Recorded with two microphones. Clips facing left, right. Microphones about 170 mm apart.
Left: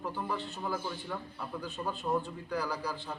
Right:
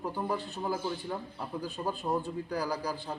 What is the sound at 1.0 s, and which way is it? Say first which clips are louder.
Speech: right 2 dB; 25° right (ahead or behind).